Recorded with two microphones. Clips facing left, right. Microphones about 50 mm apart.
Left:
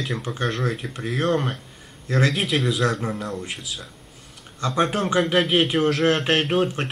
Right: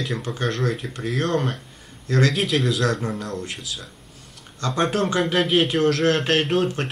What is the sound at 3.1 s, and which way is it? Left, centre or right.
A man's voice, centre.